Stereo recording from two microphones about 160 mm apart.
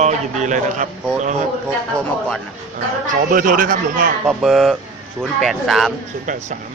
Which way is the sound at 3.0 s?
55° right (ahead or behind).